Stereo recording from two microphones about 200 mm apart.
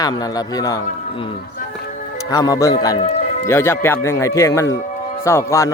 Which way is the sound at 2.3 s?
15° left (ahead or behind).